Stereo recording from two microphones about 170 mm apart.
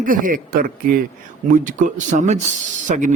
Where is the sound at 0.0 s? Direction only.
55° right (ahead or behind).